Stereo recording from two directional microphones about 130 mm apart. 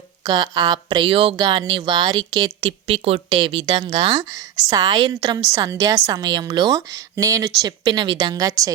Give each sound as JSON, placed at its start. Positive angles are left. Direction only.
{"t": 0.3, "sound": "speech", "side_deg": -35}